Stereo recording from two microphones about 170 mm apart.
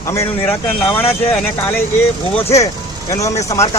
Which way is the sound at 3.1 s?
20° left (ahead or behind).